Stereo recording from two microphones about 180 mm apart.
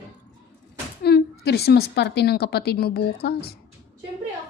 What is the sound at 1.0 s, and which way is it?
A woman's voice, 65° left (ahead or behind).